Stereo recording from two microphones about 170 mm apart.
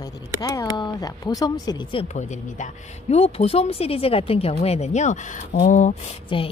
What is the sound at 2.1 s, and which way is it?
Speech, 40° left (ahead or behind).